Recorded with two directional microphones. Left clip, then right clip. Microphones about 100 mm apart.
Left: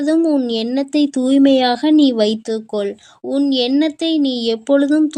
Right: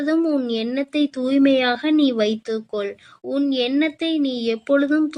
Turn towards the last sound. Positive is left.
turn(degrees=25)  # may be behind; listen again after turning